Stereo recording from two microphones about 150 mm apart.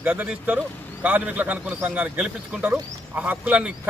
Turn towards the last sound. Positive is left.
turn(degrees=-10)  # may be behind; listen again after turning